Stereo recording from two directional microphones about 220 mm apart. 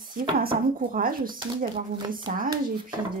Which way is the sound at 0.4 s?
40° right (ahead or behind).